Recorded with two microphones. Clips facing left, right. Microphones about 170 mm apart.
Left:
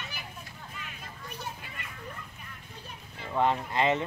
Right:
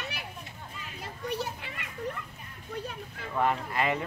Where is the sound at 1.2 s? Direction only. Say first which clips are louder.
Right 8 dB; 75° right (ahead or behind).